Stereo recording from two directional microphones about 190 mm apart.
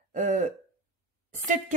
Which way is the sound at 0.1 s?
40° right (ahead or behind).